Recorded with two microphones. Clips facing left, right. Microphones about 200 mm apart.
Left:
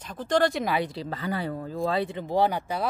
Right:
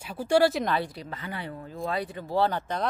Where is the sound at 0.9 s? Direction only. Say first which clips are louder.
Left 6 dB; 30° left (ahead or behind).